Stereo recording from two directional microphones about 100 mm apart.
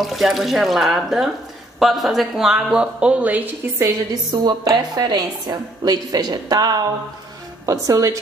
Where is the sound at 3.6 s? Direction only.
25° right (ahead or behind).